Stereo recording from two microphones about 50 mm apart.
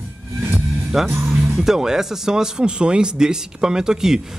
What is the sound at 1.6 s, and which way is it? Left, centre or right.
Speech, centre.